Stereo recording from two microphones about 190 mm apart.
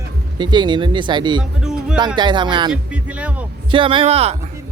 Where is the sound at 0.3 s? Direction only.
25° right (ahead or behind).